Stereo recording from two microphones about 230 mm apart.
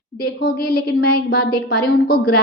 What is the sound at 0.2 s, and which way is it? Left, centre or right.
A woman's voice, left.